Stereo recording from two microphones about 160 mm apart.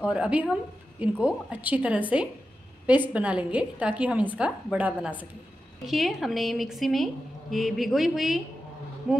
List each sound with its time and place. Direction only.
0.0 s a woman's voice: 5° right (ahead or behind)